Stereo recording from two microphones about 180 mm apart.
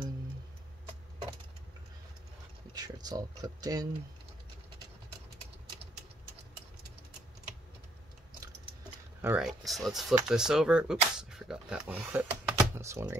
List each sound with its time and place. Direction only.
2.7 s speech: 20° right (ahead or behind)
9.2 s speech: 10° right (ahead or behind)
9.5 s speech: centre (ahead or behind); by 13.2 s 15° right (ahead or behind)